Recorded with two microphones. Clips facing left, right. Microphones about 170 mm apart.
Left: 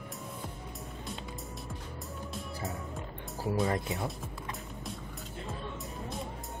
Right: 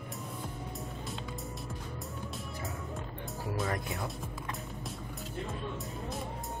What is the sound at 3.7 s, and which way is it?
Speech, 20° left (ahead or behind).